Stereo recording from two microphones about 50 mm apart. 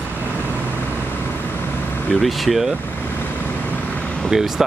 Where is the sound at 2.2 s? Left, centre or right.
Centre.